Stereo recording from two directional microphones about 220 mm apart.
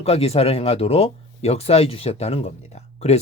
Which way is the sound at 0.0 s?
25° left (ahead or behind).